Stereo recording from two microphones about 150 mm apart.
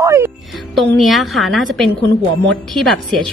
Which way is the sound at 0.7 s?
Centre (ahead or behind).